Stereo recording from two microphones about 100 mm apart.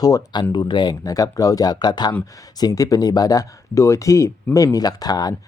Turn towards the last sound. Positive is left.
turn(degrees=40)  # may be behind; listen again after turning